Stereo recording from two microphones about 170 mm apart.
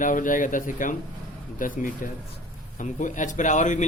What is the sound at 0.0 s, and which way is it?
A man's voice, 50° left (ahead or behind).